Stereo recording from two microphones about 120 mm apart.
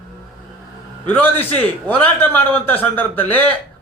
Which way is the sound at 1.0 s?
15° left (ahead or behind).